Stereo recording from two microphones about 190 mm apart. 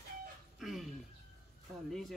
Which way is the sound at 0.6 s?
Centre (ahead or behind).